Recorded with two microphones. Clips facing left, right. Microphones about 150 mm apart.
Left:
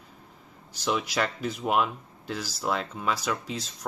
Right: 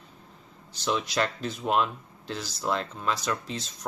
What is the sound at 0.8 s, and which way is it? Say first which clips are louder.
Speech: even; 10° left (ahead or behind).